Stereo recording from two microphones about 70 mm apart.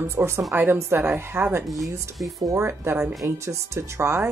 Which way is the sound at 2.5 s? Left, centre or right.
Right.